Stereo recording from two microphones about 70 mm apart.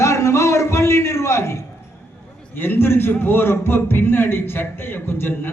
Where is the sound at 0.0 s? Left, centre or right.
Left.